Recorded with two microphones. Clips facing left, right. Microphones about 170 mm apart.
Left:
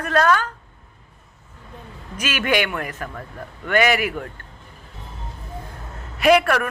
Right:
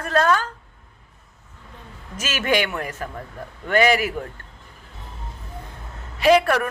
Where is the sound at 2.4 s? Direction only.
35° right (ahead or behind).